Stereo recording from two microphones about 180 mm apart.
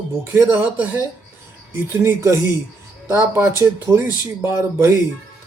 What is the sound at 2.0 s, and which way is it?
Speech, 15° right (ahead or behind).